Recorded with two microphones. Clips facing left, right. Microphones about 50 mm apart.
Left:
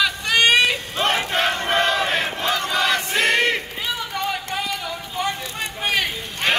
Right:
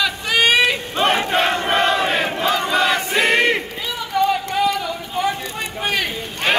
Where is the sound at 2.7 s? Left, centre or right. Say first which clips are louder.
Right 3 dB; centre.